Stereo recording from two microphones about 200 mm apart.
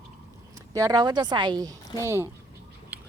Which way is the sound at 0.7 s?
20° right (ahead or behind).